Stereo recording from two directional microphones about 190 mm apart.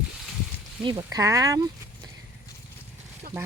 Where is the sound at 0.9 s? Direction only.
20° right (ahead or behind).